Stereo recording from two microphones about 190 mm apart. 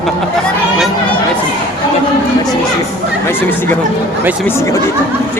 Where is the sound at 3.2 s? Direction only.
10° left (ahead or behind).